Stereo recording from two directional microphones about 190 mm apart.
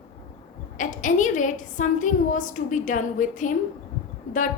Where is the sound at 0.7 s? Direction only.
40° left (ahead or behind).